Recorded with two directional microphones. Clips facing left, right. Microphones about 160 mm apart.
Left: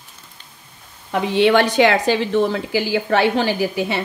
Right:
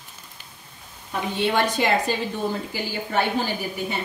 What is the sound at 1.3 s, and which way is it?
Speech, 80° left.